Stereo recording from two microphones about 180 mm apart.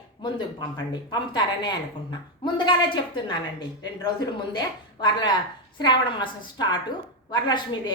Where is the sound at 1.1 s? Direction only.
25° left (ahead or behind).